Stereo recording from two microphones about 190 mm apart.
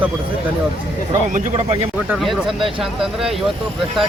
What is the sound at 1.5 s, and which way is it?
Speech, 30° right (ahead or behind).